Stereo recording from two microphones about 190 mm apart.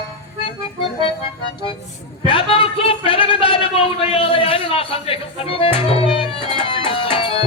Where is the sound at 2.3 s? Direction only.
30° left (ahead or behind).